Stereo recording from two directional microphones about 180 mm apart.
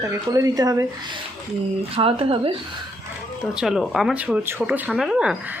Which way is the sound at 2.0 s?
30° right (ahead or behind).